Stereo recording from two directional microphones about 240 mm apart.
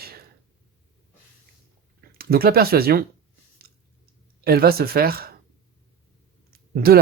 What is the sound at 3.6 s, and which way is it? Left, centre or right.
Chewing, right.